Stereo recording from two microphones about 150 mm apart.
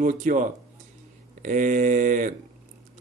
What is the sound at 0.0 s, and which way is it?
Speech, 60° right (ahead or behind).